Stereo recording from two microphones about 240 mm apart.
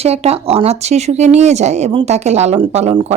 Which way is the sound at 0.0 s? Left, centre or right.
Right.